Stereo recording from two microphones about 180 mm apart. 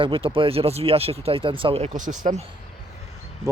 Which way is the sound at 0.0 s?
30° right (ahead or behind).